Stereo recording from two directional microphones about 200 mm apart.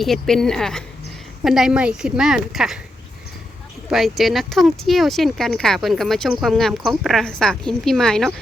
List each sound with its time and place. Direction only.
0.0 s speech: centre (ahead or behind)
3.8 s speech: centre (ahead or behind)